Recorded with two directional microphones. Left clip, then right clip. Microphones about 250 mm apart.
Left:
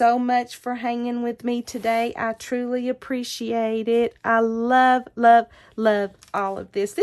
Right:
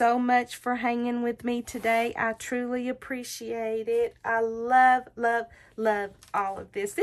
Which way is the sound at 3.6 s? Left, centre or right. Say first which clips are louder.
Left 5 dB; left.